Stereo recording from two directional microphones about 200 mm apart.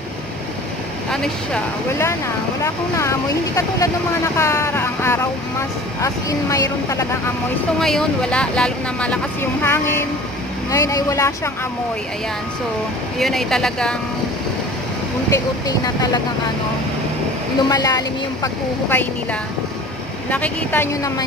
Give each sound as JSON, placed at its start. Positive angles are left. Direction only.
{"t": 1.1, "sound": "speech", "side_deg": 0}
{"t": 2.6, "sound": "speech", "side_deg": 15}
{"t": 7.8, "sound": "speech", "side_deg": 5}
{"t": 13.2, "sound": "speech", "side_deg": 0}
{"t": 15.2, "sound": "speech", "side_deg": 20}
{"t": 17.6, "sound": "speech", "side_deg": 20}
{"t": 20.2, "sound": "speech", "side_deg": 5}